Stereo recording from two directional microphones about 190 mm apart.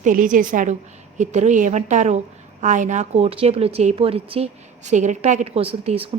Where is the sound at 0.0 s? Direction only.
45° right (ahead or behind).